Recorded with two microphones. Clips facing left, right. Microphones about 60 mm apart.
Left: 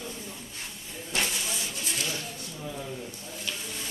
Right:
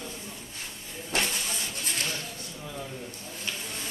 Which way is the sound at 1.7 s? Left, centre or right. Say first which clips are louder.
Even; right.